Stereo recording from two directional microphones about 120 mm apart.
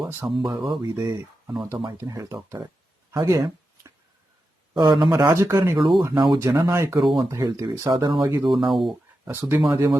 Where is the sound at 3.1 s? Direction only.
30° right (ahead or behind).